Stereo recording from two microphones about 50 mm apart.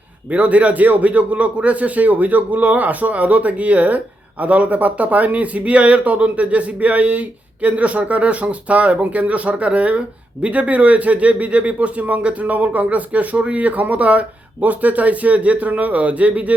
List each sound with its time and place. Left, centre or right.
0.3 s a man's voice: right